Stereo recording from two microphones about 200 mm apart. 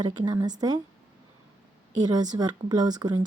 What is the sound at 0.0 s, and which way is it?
Speech, 20° right (ahead or behind).